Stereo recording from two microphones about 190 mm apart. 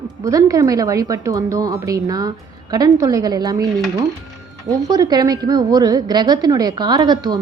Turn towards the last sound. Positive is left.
turn(degrees=-20)  # may be behind; listen again after turning